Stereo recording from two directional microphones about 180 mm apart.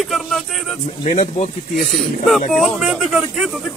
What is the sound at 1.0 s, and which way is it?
Speech, 45° left (ahead or behind).